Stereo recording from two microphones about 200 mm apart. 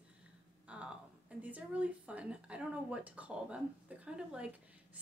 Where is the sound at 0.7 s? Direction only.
5° right (ahead or behind).